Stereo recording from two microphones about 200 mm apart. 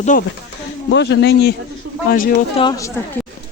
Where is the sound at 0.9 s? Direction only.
60° left (ahead or behind).